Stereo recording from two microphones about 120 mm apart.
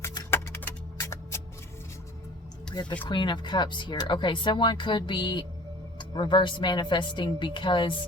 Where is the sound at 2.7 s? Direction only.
35° left (ahead or behind).